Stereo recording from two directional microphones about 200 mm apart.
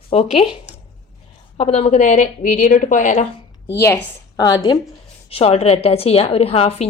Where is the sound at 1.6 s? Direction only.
35° left (ahead or behind).